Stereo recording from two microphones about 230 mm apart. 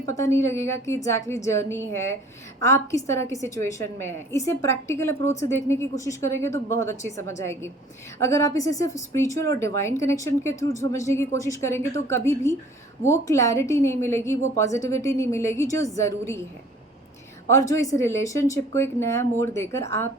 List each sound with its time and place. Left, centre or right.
0.1 s speech: centre
17.5 s speech: centre